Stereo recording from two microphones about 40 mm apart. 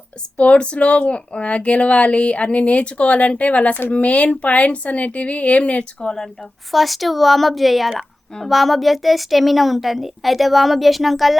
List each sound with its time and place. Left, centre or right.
0.3 s speech: left
6.0 s speech: centre
6.7 s a woman's voice: centre